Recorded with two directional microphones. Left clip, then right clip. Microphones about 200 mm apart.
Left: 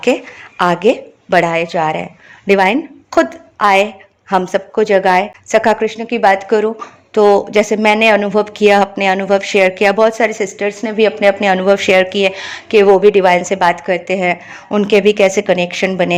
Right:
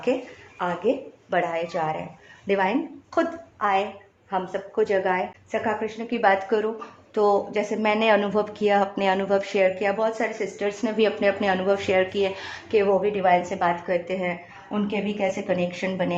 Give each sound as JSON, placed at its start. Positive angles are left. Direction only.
{"t": 0.6, "sound": "speech", "side_deg": 40}
{"t": 6.0, "sound": "a woman's voice", "side_deg": 30}
{"t": 10.7, "sound": "a woman's voice", "side_deg": 20}